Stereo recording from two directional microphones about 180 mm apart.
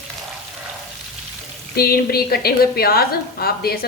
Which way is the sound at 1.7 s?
60° left (ahead or behind).